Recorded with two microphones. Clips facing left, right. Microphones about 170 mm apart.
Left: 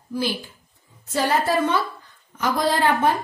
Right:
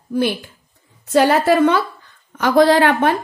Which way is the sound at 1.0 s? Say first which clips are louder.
Right 8 dB; 75° right (ahead or behind).